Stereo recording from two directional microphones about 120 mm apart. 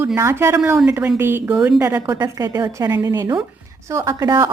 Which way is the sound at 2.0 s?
30° right (ahead or behind).